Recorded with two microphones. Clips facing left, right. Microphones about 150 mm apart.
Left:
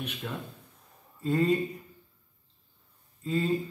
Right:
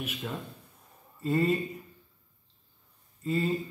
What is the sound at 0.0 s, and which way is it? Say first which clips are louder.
A man's voice: even; 5° right (ahead or behind).